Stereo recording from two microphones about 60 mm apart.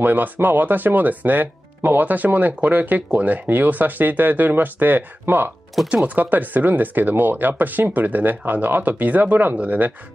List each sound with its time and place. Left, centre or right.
0.0 s speech: right